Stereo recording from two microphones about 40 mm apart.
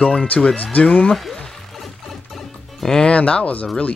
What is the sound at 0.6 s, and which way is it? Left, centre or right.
Speech, left.